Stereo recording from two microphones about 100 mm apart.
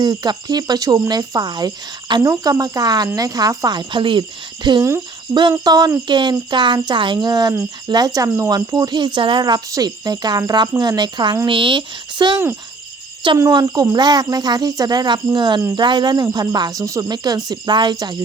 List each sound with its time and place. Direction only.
0.0 s speech: 45° right (ahead or behind)
3.8 s speech: 55° right (ahead or behind)
11.4 s speech: 55° right (ahead or behind)
13.4 s speech: 40° right (ahead or behind)